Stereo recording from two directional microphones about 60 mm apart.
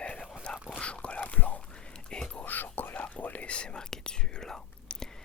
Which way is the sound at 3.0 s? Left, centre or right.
Left.